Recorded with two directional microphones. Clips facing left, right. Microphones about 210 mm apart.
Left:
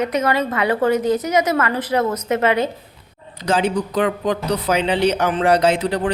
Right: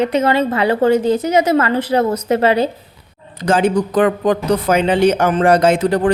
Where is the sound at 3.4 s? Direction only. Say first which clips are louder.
Right 4 dB; 50° right (ahead or behind).